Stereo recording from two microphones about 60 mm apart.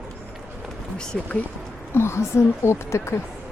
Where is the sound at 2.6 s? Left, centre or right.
Left.